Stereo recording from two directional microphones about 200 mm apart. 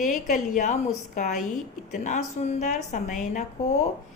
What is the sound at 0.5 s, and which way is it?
A woman's voice, 35° left (ahead or behind).